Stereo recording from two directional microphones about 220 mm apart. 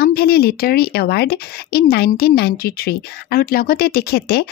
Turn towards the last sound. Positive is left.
turn(degrees=45)  # may be behind; listen again after turning